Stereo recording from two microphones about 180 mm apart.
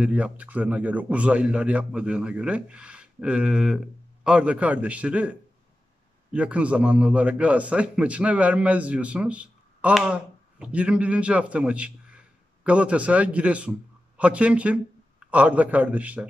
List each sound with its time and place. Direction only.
0.0 s a man's voice: 5° right (ahead or behind)